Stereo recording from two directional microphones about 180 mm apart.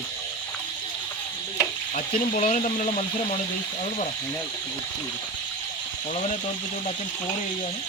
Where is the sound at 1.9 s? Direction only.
45° left (ahead or behind).